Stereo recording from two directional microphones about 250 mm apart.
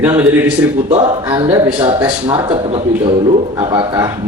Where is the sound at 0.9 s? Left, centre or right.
Right.